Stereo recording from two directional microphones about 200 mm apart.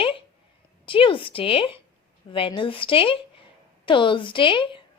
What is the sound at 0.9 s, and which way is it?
A woman's voice, 25° left (ahead or behind).